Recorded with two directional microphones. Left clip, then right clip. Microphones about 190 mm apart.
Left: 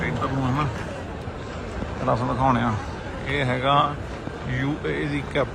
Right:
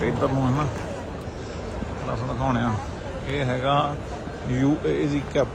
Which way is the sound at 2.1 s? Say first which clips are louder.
Left 6 dB; 10° right (ahead or behind).